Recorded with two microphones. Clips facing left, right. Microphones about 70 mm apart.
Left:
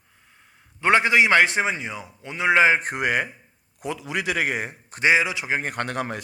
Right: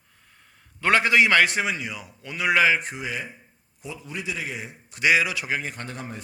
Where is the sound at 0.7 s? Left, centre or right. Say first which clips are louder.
Left 1 dB; left.